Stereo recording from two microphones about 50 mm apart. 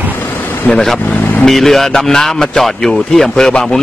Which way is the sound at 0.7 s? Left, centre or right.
Centre.